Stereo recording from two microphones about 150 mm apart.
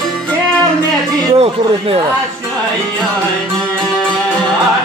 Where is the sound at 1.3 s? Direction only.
40° right (ahead or behind).